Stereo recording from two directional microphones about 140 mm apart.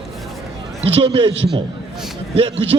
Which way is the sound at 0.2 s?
Centre (ahead or behind).